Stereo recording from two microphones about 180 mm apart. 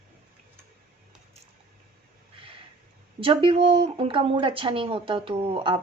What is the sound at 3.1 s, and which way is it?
Speech, 30° right (ahead or behind).